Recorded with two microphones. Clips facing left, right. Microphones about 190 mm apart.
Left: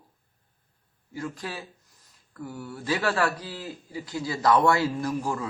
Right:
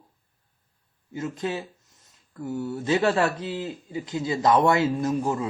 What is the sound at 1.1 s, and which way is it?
A woman's voice, 20° right (ahead or behind).